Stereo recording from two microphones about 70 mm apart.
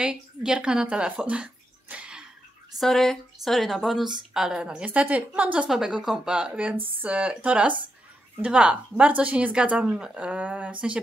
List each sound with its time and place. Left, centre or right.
0.0 s speech: centre
2.8 s a woman's voice: centre
4.8 s a woman's voice: right